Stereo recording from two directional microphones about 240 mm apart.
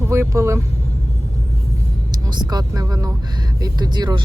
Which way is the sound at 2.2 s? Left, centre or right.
Centre.